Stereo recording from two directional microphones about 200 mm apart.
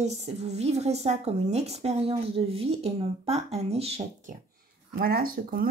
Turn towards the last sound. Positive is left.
turn(degrees=-45)  # may be behind; listen again after turning